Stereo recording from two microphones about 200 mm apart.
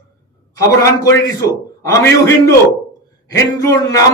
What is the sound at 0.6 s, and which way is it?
A man's voice, 15° left (ahead or behind).